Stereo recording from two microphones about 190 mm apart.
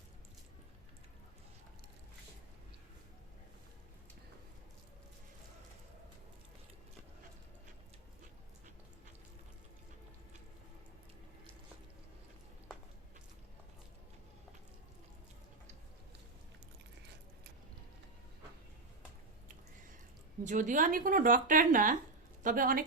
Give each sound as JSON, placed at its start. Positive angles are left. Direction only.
{"t": 20.4, "sound": "speech", "side_deg": -40}